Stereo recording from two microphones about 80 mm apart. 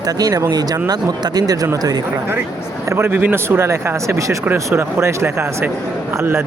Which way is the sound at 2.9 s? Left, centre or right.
Right.